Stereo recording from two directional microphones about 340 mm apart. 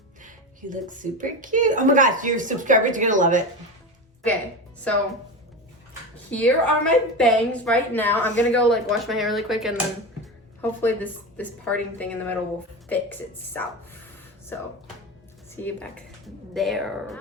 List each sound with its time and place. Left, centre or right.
0.2 s a woman's voice: right
6.3 s a woman's voice: centre
15.6 s a woman's voice: centre